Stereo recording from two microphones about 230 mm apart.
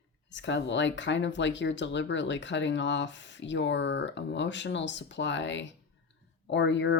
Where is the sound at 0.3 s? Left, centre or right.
Left.